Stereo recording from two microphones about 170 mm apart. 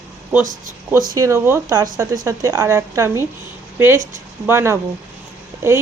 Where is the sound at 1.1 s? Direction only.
20° right (ahead or behind).